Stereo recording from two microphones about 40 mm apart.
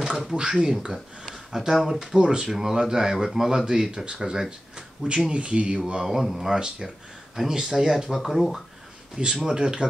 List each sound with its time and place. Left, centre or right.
0.3 s speech: right
0.9 s a sound: centre
1.9 s speech: centre
4.5 s speech: right
6.0 s speech: centre
9.2 s speech: centre